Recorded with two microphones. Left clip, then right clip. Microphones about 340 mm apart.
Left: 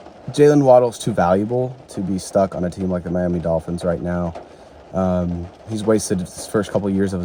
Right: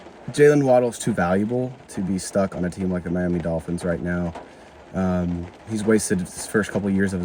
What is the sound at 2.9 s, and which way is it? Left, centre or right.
Speech, left.